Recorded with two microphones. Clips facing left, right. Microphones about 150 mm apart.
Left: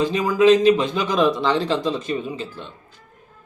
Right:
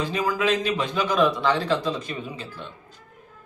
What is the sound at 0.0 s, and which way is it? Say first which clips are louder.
A man's voice: left 8 dB; 20° left (ahead or behind).